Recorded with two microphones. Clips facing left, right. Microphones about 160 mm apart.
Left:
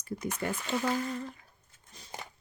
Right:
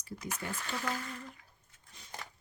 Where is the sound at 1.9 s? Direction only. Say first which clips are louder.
Left 4 dB; 35° left (ahead or behind).